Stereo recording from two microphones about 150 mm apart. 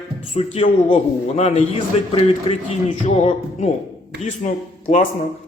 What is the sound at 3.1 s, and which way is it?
A man's voice, 50° left (ahead or behind).